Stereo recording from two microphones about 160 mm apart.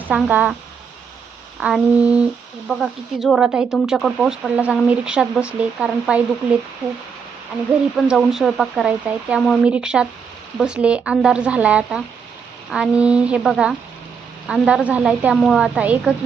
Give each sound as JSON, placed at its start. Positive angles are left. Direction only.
{"t": 0.1, "sound": "speech", "side_deg": -10}
{"t": 1.5, "sound": "speech", "side_deg": -5}
{"t": 7.9, "sound": "speech", "side_deg": 0}